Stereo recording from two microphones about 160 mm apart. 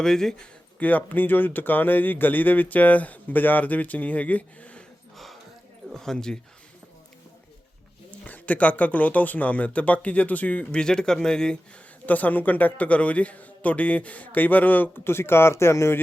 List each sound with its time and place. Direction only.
0.0 s speech: 5° left (ahead or behind)
8.2 s speech: 10° left (ahead or behind)